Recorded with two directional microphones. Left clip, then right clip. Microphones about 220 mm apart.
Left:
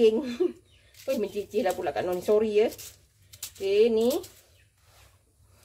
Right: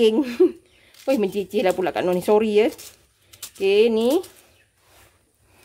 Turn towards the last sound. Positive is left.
turn(degrees=-50)  # may be behind; listen again after turning